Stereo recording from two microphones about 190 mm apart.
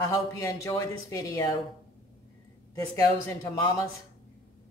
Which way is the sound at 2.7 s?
15° left (ahead or behind).